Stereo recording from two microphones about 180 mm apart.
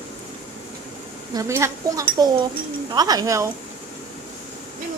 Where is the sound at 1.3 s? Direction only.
15° right (ahead or behind).